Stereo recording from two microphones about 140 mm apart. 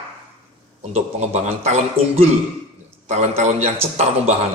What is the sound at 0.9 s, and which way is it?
Speech, 50° right (ahead or behind).